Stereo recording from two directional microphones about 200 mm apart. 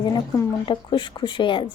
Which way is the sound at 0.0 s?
20° left (ahead or behind).